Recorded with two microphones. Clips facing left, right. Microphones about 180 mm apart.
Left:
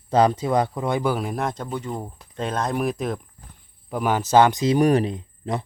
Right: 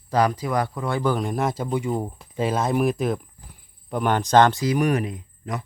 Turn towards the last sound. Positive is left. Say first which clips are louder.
# left 4 dB
turn(degrees=30)  # may be behind; listen again after turning